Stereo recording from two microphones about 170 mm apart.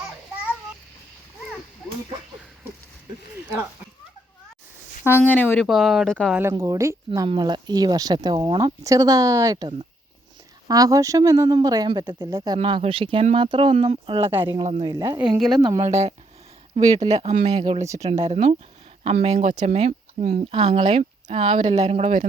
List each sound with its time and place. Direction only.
5.0 s speech: 10° left (ahead or behind)
5.6 s speech: 5° right (ahead or behind)
6.5 s speech: 20° right (ahead or behind)
7.1 s speech: 30° right (ahead or behind)
12.5 s speech: 35° right (ahead or behind)
15.3 s speech: centre (ahead or behind)
15.6 s speech: 20° right (ahead or behind)
16.7 s speech: 40° right (ahead or behind)
17.8 s speech: 20° right (ahead or behind)
18.1 s speech: 40° right (ahead or behind)
21.4 s speech: 35° right (ahead or behind)